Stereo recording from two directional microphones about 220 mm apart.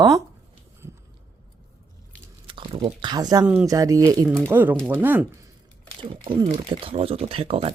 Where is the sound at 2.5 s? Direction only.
20° right (ahead or behind).